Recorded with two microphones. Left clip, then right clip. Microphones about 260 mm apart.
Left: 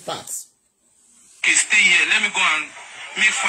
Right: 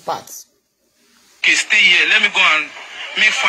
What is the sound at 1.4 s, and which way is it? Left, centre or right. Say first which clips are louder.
Speech: right 3 dB; centre.